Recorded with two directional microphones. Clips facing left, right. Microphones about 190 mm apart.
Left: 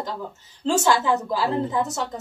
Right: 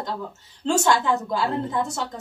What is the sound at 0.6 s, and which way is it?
A woman's voice, 5° left (ahead or behind).